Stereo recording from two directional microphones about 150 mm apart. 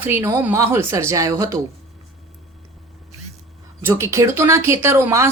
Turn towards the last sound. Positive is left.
turn(degrees=-20)  # may be behind; listen again after turning